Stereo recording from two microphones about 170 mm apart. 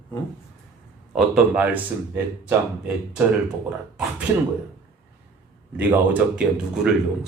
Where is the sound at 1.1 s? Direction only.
5° right (ahead or behind).